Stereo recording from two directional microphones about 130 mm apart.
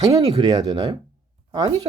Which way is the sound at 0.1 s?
30° right (ahead or behind).